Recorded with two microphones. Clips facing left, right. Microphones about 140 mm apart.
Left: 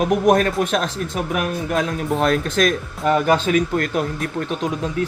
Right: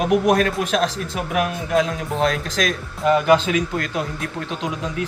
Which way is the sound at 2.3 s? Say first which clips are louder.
Left 4 dB; 50° left (ahead or behind).